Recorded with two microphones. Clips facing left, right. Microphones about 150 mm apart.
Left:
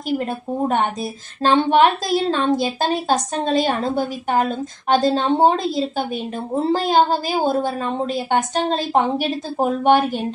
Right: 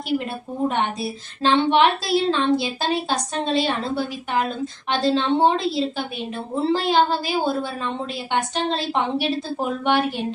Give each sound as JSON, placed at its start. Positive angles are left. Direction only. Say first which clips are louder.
{"t": 0.7, "sound": "a woman's voice", "louder": "left 3 dB", "side_deg": 45}